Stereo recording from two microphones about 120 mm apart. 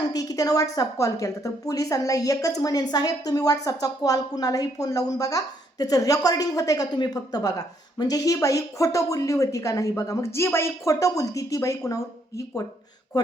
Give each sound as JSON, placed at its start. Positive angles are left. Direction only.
{"t": 0.1, "sound": "a woman's voice", "side_deg": 30}
{"t": 13.1, "sound": "speech", "side_deg": 30}